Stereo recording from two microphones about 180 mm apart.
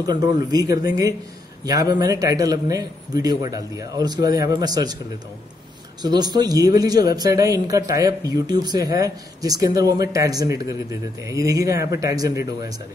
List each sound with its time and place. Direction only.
0.0 s speech: 20° right (ahead or behind)
6.0 s speech: 25° right (ahead or behind)